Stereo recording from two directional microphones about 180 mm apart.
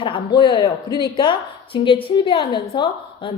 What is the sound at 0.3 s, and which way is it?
A woman's voice, 25° left (ahead or behind).